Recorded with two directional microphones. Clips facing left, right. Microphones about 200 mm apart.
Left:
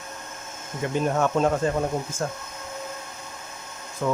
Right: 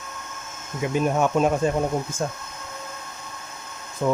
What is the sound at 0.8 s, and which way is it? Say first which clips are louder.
Speech: right 2 dB; 10° right (ahead or behind).